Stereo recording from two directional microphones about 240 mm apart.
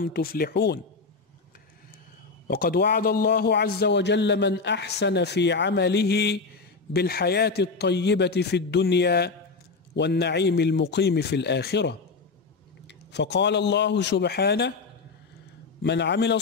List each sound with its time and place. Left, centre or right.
0.0 s speech: left
2.4 s a man's voice: left
15.8 s a man's voice: left